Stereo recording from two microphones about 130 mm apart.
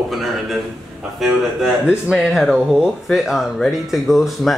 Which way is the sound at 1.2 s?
5° right (ahead or behind).